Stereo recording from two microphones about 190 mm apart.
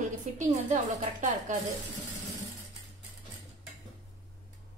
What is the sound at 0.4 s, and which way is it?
A woman's voice, 40° right (ahead or behind).